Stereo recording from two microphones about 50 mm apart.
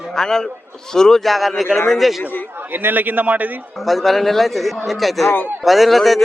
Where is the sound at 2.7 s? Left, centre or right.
Right.